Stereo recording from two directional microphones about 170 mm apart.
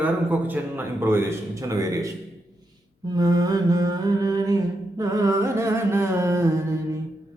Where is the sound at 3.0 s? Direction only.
20° right (ahead or behind).